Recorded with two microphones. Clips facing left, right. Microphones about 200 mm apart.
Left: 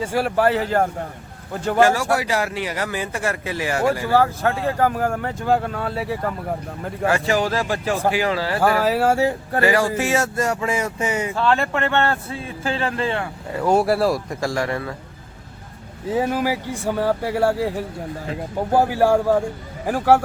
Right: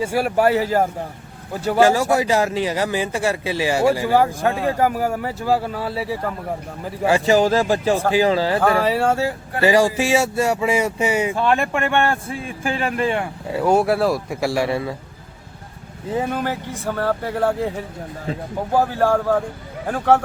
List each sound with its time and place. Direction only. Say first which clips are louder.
0.0 s speech: right 1 dB; 10° right (ahead or behind)
1.8 s speech: right 2 dB; 20° right (ahead or behind); by 6.3 s centre (ahead or behind)
7.0 s speech: right 4 dB; 15° right (ahead or behind)
8.8 s speech: even; 5° left (ahead or behind)
9.6 s speech: right 4 dB; 15° right (ahead or behind)
16.0 s speech: left 2 dB; 5° left (ahead or behind)